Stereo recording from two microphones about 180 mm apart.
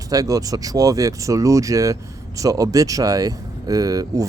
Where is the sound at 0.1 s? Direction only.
20° right (ahead or behind).